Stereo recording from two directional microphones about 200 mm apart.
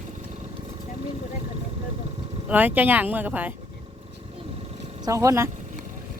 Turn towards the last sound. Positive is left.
turn(degrees=-15)  # may be behind; listen again after turning